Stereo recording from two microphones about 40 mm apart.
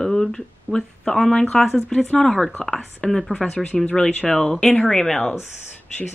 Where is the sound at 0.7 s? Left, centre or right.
Centre.